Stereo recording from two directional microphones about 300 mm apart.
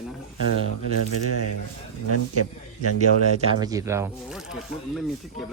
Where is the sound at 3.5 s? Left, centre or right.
Centre.